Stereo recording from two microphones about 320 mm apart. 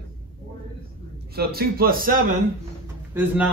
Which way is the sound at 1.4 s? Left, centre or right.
Right.